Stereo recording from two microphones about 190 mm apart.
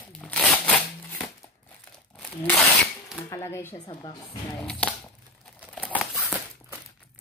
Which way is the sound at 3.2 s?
15° left (ahead or behind).